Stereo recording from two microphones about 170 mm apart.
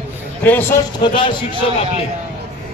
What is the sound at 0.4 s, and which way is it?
Speech, 15° left (ahead or behind).